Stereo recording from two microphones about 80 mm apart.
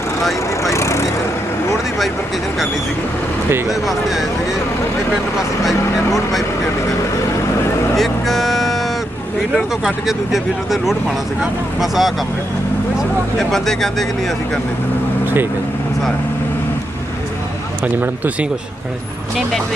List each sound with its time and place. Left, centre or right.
0.6 s vehicle: left
3.7 s speech: centre
5.4 s speech: centre
7.9 s speech: centre
13.5 s speech: centre
17.9 s a man's voice: right